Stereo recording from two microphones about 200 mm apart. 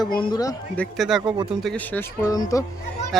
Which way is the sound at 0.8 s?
Centre (ahead or behind).